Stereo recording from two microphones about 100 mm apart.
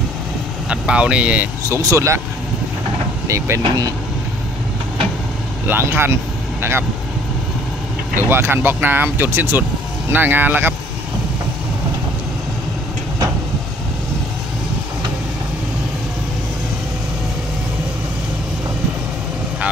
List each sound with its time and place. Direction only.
0.7 s speech: 10° right (ahead or behind)
1.6 s speech: 30° right (ahead or behind)
3.3 s speech: 30° right (ahead or behind)
5.7 s speech: 25° right (ahead or behind)
8.3 s speech: 25° right (ahead or behind)